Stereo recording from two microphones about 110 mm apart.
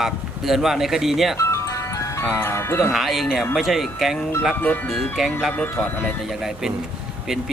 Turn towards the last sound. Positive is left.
turn(degrees=-5)  # may be behind; listen again after turning